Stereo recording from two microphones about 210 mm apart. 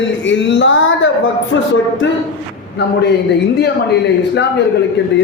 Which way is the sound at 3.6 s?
55° left (ahead or behind).